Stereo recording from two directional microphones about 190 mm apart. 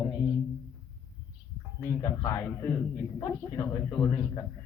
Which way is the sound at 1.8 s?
15° left (ahead or behind).